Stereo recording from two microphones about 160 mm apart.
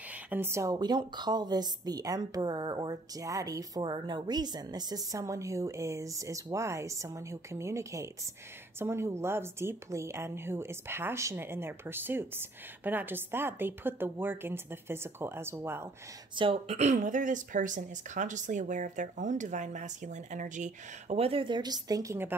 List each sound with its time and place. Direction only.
0.3 s a woman's voice: 15° right (ahead or behind)
16.3 s speech: 35° right (ahead or behind); by 22.3 s 20° right (ahead or behind)